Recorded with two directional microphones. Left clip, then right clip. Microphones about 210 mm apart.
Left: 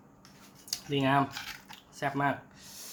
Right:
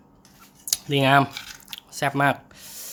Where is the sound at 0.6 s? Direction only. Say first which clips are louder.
Right 9 dB; 40° right (ahead or behind).